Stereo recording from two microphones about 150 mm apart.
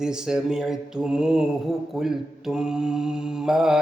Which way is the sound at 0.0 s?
5° right (ahead or behind).